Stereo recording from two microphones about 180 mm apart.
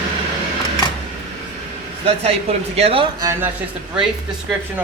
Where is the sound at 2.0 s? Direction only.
35° right (ahead or behind).